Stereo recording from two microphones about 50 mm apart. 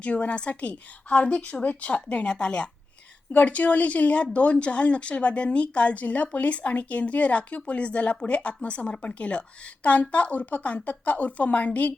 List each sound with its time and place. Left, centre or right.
0.0 s speech: left
3.3 s speech: left